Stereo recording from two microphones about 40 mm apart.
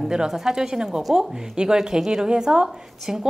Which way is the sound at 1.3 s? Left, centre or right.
Centre.